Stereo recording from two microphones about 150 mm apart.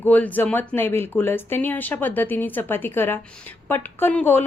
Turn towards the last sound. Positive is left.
turn(degrees=10)  # may be behind; listen again after turning